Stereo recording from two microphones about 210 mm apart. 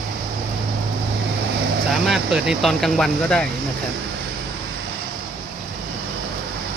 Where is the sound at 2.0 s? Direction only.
Centre (ahead or behind).